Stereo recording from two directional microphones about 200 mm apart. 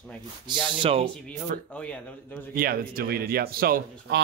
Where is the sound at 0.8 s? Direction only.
30° right (ahead or behind).